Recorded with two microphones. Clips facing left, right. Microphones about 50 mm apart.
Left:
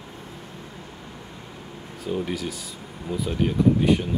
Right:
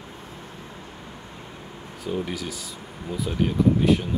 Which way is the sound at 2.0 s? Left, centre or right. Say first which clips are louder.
Left 1 dB; centre.